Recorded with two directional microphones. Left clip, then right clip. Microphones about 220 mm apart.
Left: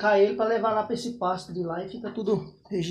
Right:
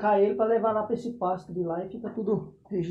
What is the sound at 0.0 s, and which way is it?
Speech, 10° left (ahead or behind).